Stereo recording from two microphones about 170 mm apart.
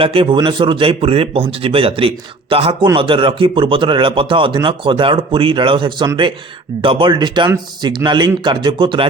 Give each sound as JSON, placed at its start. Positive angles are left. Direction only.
{"t": 0.0, "sound": "speech", "side_deg": -30}